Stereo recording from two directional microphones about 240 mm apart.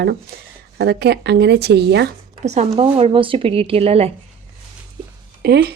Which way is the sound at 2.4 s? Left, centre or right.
Right.